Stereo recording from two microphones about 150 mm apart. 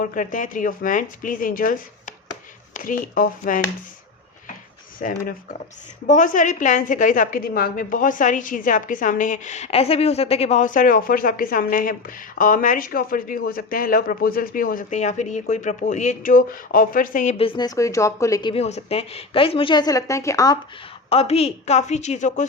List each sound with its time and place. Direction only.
0.0 s a woman's voice: 60° left (ahead or behind)
4.9 s speech: 70° left (ahead or behind)
6.1 s a woman's voice: 60° left (ahead or behind)
17.3 s speech: 35° left (ahead or behind)
18.5 s a woman's voice: 45° left (ahead or behind); by 20.6 s 25° left (ahead or behind)
21.1 s a woman's voice: 40° left (ahead or behind)